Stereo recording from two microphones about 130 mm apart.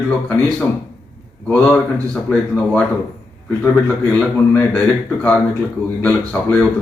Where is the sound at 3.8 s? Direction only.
10° left (ahead or behind).